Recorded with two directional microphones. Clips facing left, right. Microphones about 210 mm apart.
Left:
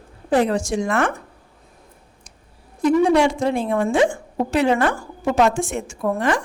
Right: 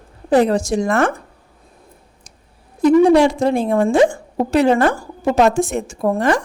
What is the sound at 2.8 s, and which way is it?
A woman's voice, 35° right (ahead or behind).